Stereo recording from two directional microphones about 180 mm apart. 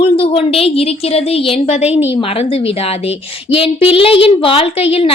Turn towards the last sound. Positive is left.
turn(degrees=35)  # may be behind; listen again after turning